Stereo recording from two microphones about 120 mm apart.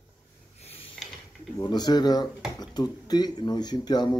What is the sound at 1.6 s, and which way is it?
Speech, 35° left (ahead or behind).